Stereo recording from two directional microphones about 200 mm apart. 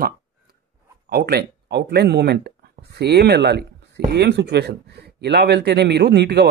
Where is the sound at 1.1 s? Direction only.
50° right (ahead or behind).